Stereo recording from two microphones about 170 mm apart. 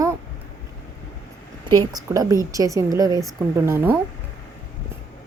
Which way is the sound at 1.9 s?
20° right (ahead or behind).